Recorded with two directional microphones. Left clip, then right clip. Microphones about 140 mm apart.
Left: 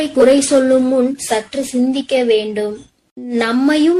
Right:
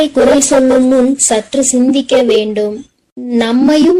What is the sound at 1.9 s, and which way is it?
A woman's voice, 30° right (ahead or behind).